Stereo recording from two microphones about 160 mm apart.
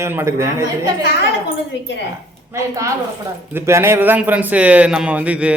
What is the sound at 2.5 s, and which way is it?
A woman's voice, 20° right (ahead or behind).